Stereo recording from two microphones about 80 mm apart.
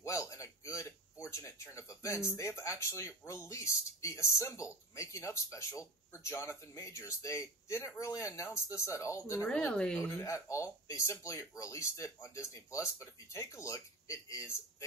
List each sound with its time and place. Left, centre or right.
0.0 s speech: left
9.5 s speech: centre
10.2 s speech: left